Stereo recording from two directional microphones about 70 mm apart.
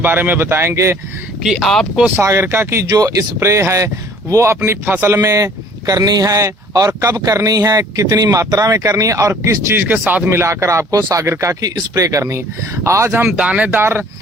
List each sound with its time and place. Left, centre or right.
0.0 s speech: right
1.4 s speech: centre
1.6 s speech: centre
2.4 s speech: right
2.9 s speech: right
5.8 s speech: right
9.7 s speech: right
10.2 s speech: right
11.6 s speech: right
13.1 s speech: right
13.4 s speech: centre
13.7 s speech: right